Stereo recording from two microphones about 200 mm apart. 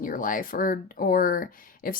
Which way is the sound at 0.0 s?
45° left (ahead or behind).